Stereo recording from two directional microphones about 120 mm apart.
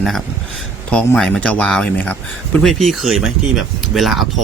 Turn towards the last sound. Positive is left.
turn(degrees=0)  # may be behind; listen again after turning